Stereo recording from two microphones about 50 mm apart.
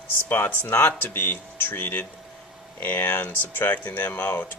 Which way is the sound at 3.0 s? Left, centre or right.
Left.